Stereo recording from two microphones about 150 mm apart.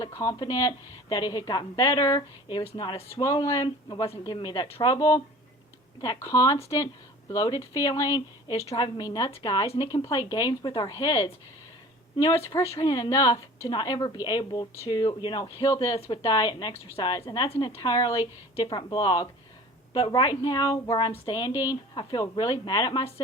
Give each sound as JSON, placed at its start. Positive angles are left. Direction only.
{"t": 0.0, "sound": "speech", "side_deg": 20}